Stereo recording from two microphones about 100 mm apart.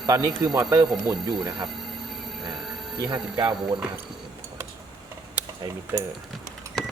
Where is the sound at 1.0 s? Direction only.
45° right (ahead or behind).